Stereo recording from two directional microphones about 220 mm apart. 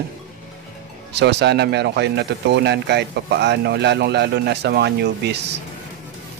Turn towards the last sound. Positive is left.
turn(degrees=-50)  # may be behind; listen again after turning